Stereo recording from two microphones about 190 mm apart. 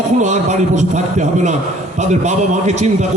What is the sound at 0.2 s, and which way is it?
A man's voice, 35° right (ahead or behind).